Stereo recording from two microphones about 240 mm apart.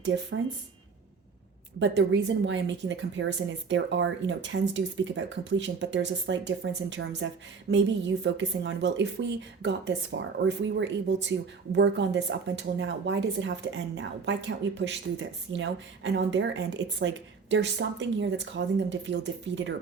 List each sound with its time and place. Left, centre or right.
1.8 s speech: right